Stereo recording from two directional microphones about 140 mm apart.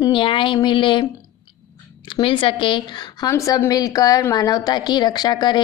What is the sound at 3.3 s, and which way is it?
A woman's voice, 20° left (ahead or behind).